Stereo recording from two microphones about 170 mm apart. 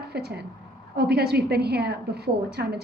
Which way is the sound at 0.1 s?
70° right (ahead or behind).